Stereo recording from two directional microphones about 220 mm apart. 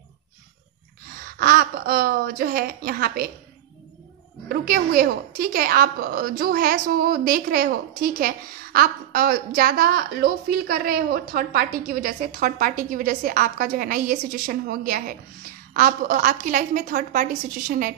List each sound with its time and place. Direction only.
1.4 s a woman's voice: 45° right (ahead or behind)
4.5 s a woman's voice: 40° right (ahead or behind)